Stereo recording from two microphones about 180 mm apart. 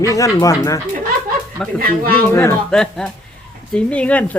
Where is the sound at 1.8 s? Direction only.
55° right (ahead or behind).